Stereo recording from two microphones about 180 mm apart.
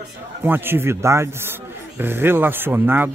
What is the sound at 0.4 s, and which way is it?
Speech, 10° right (ahead or behind).